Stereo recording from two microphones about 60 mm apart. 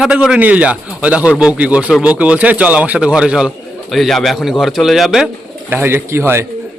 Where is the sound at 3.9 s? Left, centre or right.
Centre.